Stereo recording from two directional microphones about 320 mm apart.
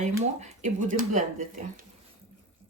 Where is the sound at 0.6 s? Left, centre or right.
Right.